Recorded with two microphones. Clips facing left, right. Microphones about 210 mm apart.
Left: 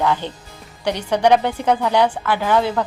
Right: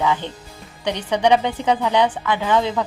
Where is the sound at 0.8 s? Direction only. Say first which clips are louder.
Left 2 dB; 10° left (ahead or behind).